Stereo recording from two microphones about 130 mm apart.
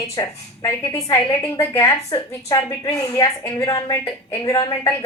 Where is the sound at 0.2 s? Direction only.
20° left (ahead or behind).